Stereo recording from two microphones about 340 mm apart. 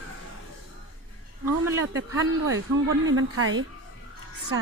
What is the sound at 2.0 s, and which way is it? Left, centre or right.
Speech, right.